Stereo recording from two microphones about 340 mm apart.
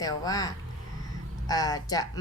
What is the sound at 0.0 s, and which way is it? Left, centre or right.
Speech, centre.